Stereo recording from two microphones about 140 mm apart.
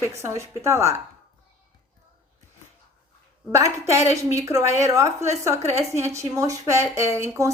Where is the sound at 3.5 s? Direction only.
20° right (ahead or behind).